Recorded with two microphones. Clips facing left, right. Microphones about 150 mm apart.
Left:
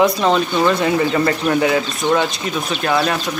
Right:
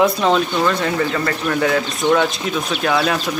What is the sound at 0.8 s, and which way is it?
Speech, 15° left (ahead or behind).